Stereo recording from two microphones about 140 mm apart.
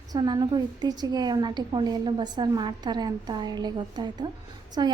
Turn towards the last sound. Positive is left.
turn(degrees=-30)  # may be behind; listen again after turning